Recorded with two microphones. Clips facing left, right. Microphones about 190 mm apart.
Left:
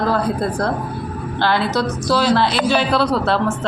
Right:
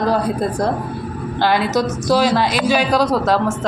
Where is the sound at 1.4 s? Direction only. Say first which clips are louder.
Right 2 dB; 15° right (ahead or behind).